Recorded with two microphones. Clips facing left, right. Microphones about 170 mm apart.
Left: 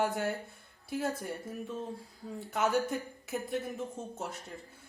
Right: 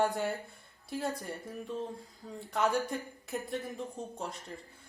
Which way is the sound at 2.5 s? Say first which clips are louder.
Left 1 dB; centre (ahead or behind).